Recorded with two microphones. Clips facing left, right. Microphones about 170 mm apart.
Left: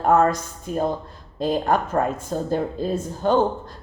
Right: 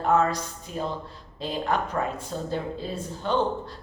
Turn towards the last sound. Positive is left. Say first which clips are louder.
# left 6 dB
turn(degrees=45)  # may be behind; listen again after turning